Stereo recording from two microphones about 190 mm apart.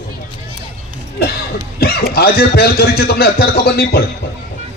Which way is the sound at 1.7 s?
55° left (ahead or behind).